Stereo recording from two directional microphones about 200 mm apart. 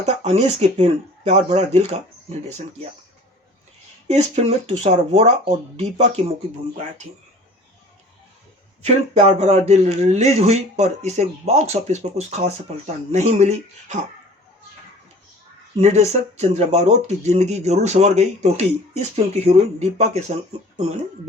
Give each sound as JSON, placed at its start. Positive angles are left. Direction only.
{"t": 0.0, "sound": "speech", "side_deg": -35}
{"t": 4.1, "sound": "speech", "side_deg": -35}
{"t": 8.8, "sound": "speech", "side_deg": -35}
{"t": 15.8, "sound": "speech", "side_deg": -35}